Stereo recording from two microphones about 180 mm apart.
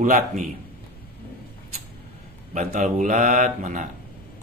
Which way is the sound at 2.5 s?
45° right (ahead or behind).